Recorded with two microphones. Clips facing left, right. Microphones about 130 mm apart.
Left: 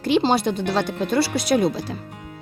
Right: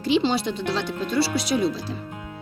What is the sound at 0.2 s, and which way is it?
Speech, 45° left (ahead or behind).